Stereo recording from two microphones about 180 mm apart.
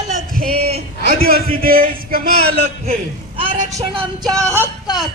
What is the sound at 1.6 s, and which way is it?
Speech, 55° right (ahead or behind).